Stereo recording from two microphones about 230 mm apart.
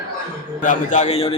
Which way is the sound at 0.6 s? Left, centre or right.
Left.